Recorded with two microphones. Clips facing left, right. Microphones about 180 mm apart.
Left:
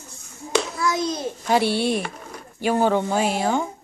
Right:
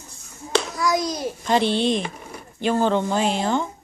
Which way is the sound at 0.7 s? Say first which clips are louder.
Right 1 dB; 25° left (ahead or behind).